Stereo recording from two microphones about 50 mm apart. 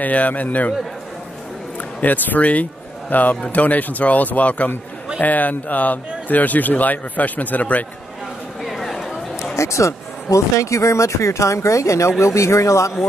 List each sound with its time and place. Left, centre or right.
0.0 s speech: left
2.0 s speech: left
8.6 s chatter: centre
9.6 s speech: left